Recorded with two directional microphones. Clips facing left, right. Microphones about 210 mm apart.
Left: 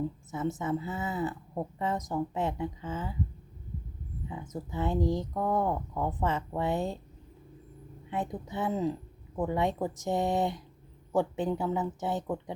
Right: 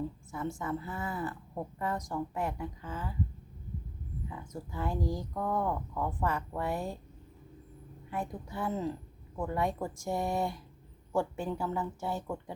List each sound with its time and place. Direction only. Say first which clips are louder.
0.3 s a woman's voice: left 5 dB; 20° left (ahead or behind)
4.3 s a woman's voice: left 6 dB; 20° left (ahead or behind)
8.1 s a woman's voice: left 3 dB; 20° left (ahead or behind)